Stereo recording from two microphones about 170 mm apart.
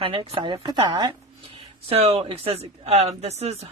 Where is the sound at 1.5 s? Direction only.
35° right (ahead or behind).